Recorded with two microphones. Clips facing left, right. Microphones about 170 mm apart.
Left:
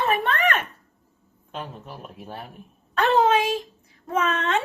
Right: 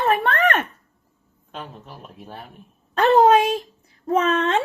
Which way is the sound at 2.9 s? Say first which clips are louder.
Right 5 dB; 35° right (ahead or behind).